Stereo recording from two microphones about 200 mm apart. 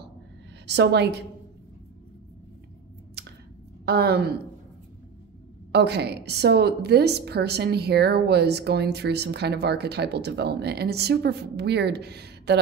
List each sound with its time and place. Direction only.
0.7 s a woman's voice: 60° right (ahead or behind)
3.8 s a woman's voice: 55° right (ahead or behind)
5.7 s a woman's voice: 55° right (ahead or behind)